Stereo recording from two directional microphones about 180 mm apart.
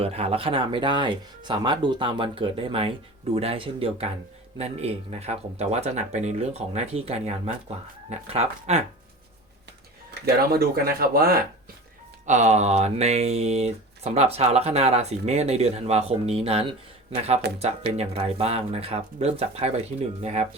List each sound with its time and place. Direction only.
0.0 s speech: 35° right (ahead or behind)
10.2 s speech: 60° right (ahead or behind)
12.2 s speech: 40° right (ahead or behind)